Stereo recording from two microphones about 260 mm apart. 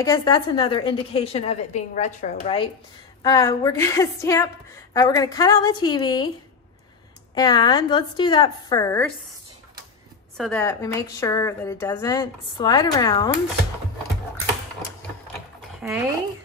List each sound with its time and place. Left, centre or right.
0.0 s a woman's voice: centre
7.3 s speech: centre
10.3 s speech: centre
15.8 s speech: centre